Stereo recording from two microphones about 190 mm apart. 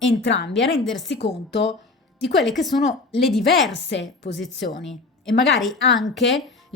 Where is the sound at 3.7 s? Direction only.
70° left (ahead or behind).